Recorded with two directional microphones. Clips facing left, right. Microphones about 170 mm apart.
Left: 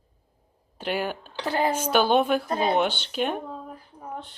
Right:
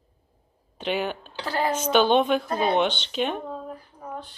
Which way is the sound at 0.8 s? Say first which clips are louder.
Right 1 dB; 10° left (ahead or behind).